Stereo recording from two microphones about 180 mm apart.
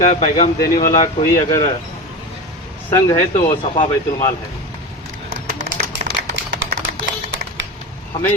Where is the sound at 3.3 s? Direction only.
40° left (ahead or behind).